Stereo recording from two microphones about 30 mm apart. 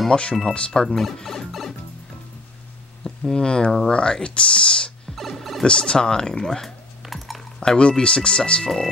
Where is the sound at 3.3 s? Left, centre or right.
Left.